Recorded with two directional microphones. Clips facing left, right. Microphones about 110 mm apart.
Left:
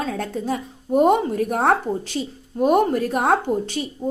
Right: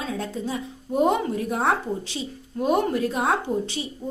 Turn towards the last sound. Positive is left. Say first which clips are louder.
# left 4 dB
turn(degrees=50)  # may be behind; listen again after turning